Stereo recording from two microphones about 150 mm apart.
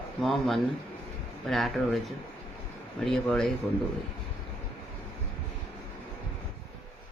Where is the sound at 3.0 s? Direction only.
5° left (ahead or behind).